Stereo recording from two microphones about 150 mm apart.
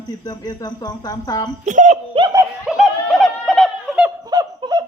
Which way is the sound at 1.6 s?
55° right (ahead or behind).